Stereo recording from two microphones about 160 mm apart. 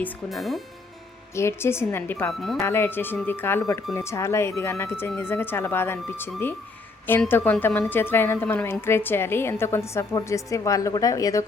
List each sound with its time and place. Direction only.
0.3 s speech: centre (ahead or behind)
1.4 s a woman's voice: 15° left (ahead or behind)